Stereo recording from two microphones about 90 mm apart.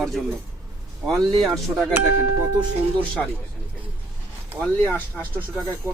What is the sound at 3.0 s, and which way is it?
Speech, 15° left (ahead or behind).